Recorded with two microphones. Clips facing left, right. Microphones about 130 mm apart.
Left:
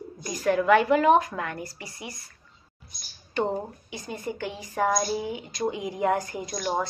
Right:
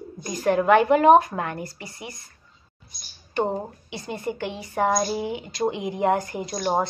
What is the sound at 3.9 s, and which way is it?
Speech, 70° right (ahead or behind).